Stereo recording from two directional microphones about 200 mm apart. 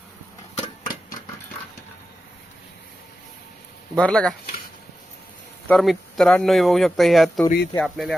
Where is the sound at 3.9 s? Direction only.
5° left (ahead or behind).